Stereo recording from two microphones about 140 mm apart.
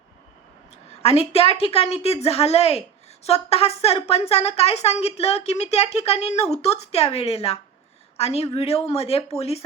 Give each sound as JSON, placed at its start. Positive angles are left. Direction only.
{"t": 1.0, "sound": "a woman's voice", "side_deg": 45}